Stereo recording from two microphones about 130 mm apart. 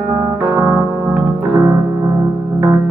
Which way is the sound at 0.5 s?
15° right (ahead or behind).